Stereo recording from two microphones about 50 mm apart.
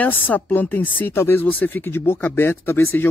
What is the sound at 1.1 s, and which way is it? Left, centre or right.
Speech, left.